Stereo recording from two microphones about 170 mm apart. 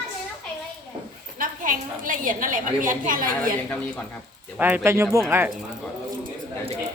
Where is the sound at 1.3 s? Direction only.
55° right (ahead or behind).